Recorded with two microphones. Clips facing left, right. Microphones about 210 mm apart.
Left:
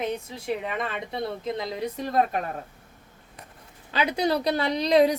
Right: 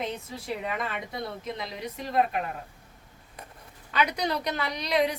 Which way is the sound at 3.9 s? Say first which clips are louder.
Left 3 dB; 30° left (ahead or behind).